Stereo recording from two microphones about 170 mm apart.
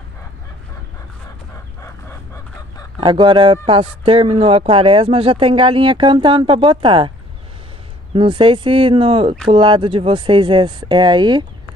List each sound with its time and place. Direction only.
2.0 s fowl: 20° left (ahead or behind)
3.0 s speech: 30° right (ahead or behind)
8.1 s speech: 30° right (ahead or behind)